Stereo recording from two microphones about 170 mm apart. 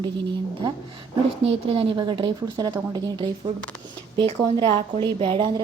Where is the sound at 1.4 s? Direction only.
35° right (ahead or behind).